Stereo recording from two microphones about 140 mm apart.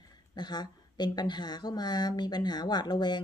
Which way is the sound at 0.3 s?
30° left (ahead or behind).